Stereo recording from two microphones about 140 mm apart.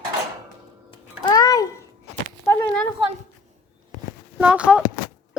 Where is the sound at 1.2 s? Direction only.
25° left (ahead or behind).